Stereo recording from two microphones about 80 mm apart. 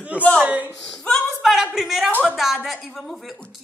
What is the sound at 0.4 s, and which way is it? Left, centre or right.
Speech, right.